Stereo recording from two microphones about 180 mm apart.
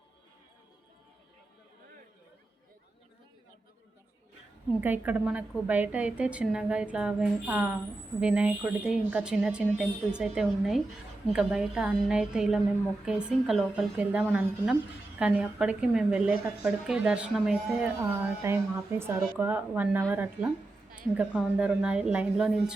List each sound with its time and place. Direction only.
4.8 s a woman's voice: 10° right (ahead or behind)